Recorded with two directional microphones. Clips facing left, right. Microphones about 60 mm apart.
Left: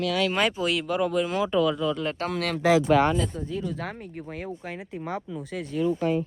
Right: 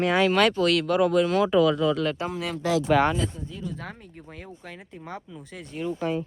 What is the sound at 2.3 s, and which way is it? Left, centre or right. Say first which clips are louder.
Speech: left 3 dB; left.